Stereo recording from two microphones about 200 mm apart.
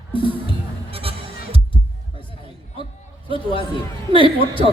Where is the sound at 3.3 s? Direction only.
25° left (ahead or behind).